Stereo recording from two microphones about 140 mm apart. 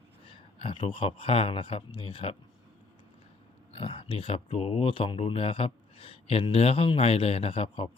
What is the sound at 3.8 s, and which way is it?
Speech, 40° left (ahead or behind).